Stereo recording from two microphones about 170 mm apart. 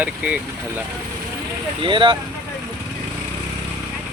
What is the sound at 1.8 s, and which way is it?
Speech, 30° right (ahead or behind).